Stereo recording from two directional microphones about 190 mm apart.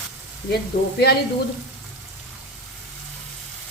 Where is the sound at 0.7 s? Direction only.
50° left (ahead or behind).